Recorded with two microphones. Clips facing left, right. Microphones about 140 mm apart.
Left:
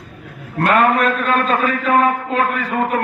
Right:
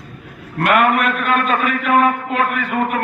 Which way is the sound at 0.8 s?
25° left (ahead or behind).